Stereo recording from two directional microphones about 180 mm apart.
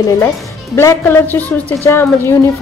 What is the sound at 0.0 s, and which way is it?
A woman's voice, 20° left (ahead or behind).